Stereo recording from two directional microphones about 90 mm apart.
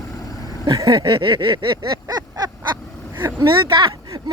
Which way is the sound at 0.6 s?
45° right (ahead or behind).